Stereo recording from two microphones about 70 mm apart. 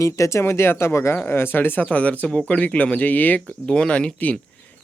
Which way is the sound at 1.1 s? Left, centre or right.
Left.